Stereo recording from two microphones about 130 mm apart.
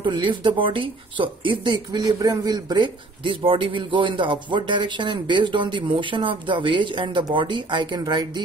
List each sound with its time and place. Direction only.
0.0 s speech: 40° right (ahead or behind)